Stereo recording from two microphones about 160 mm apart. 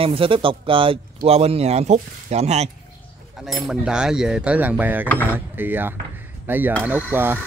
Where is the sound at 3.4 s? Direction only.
Centre (ahead or behind).